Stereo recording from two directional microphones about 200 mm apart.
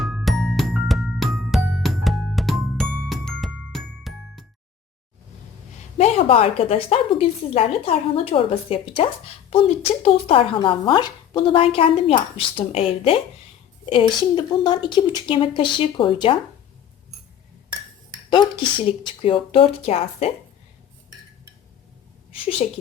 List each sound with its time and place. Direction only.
0.0 s music: centre (ahead or behind)
6.0 s speech: 30° left (ahead or behind)
14.3 s speech: 20° left (ahead or behind)
18.3 s speech: 25° left (ahead or behind)
22.3 s speech: 30° left (ahead or behind)